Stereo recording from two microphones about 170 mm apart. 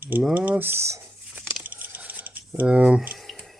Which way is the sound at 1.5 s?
10° right (ahead or behind).